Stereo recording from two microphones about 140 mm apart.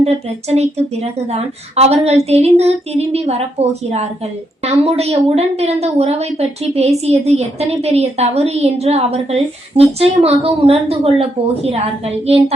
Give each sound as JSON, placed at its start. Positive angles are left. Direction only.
{"t": 0.0, "sound": "a woman's voice", "side_deg": -50}